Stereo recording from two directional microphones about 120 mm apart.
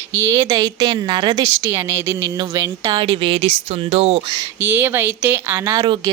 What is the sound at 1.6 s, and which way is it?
Speech, 20° right (ahead or behind).